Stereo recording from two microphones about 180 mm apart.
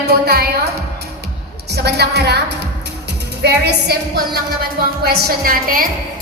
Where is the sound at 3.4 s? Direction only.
65° right (ahead or behind).